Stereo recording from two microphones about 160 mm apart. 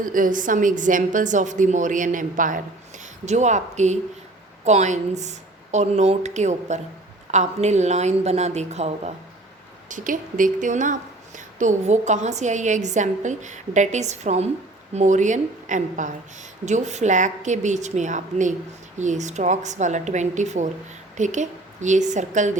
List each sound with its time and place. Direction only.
0.0 s a woman's voice: 55° right (ahead or behind)
9.9 s a woman's voice: 55° right (ahead or behind)